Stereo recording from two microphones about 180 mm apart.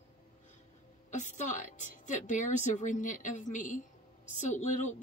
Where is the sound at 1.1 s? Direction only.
40° left (ahead or behind).